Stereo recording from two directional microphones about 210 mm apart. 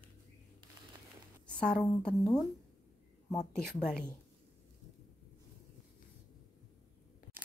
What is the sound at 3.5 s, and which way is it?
Speech, 5° left (ahead or behind).